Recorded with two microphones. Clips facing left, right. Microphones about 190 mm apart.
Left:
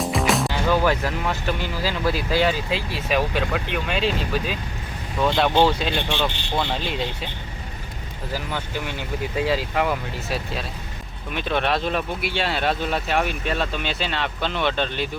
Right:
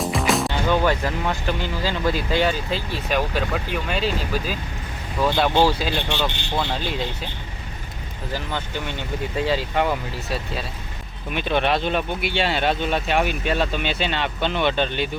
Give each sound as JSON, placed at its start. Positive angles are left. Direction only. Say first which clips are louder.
{"t": 0.0, "sound": "speech", "louder": "even", "side_deg": 0}
{"t": 8.3, "sound": "speech", "louder": "even", "side_deg": 5}